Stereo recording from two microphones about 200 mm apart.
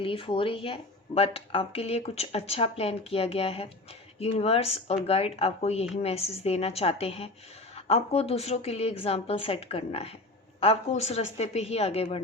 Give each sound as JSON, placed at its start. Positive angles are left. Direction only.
{"t": 0.0, "sound": "speech", "side_deg": 25}